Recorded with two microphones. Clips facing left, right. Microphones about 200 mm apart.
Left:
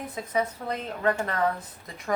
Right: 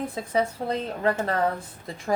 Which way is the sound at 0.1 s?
30° right (ahead or behind).